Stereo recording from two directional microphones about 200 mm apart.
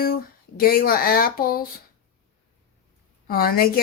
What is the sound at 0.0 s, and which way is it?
Speech, 50° left (ahead or behind).